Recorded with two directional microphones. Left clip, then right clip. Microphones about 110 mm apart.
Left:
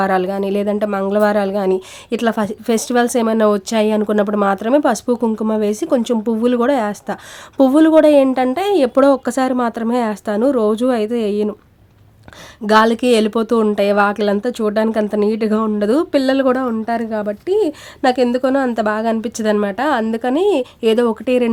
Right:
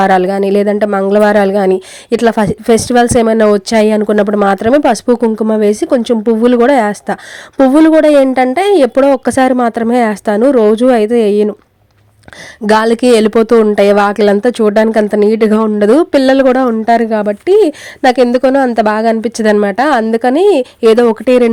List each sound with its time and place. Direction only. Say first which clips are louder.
0.0 s a woman's voice: right 7 dB; 55° right (ahead or behind)
12.6 s speech: right 4 dB; 45° right (ahead or behind)